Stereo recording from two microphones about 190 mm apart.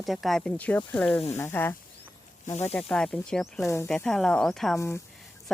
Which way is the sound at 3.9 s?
5° left (ahead or behind).